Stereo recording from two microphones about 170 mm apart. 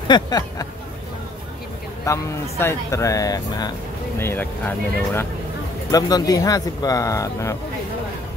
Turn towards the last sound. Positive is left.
turn(degrees=20)  # may be behind; listen again after turning